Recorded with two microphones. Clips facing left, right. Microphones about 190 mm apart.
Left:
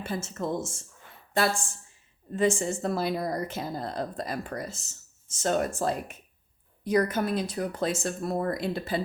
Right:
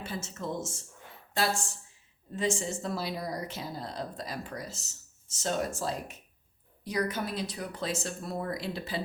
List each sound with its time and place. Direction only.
0.0 s speech: 50° left (ahead or behind)
2.3 s speech: 55° left (ahead or behind)